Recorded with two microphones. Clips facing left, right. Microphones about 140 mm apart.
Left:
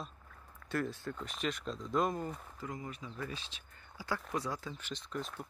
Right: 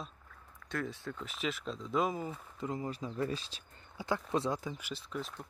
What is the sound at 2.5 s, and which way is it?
Speech, 25° right (ahead or behind).